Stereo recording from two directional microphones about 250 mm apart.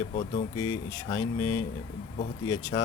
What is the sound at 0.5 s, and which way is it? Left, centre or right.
Speech, left.